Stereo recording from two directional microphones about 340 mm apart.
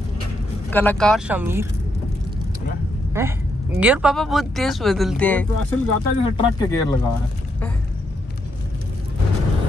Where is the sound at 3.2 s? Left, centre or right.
Centre.